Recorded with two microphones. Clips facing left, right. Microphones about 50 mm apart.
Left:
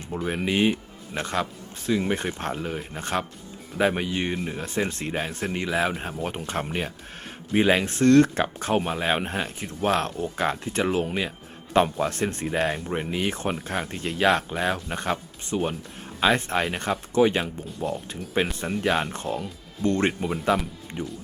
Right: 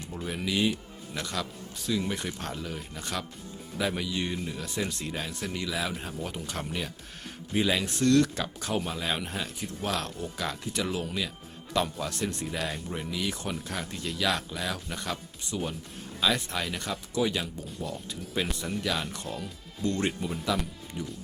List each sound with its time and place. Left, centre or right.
0.3 s speech: left